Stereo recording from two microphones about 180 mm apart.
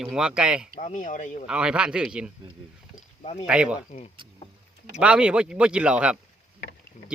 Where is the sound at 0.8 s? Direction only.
40° left (ahead or behind).